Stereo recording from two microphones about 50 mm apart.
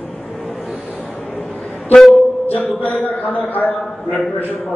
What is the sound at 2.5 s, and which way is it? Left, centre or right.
Speech, left.